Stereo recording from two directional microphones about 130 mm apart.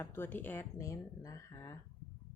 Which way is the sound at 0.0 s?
15° left (ahead or behind).